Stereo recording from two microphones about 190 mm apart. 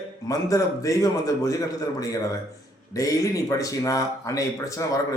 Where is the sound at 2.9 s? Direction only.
15° left (ahead or behind).